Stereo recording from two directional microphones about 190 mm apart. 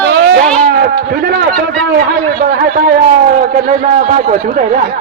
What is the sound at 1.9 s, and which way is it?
A man's voice, 55° right (ahead or behind).